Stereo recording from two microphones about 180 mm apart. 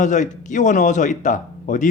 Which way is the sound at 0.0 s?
45° left (ahead or behind).